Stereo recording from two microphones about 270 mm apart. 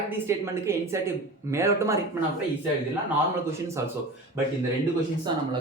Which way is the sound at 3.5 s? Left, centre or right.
Centre.